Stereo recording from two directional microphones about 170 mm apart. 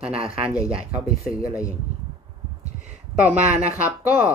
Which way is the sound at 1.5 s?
20° left (ahead or behind).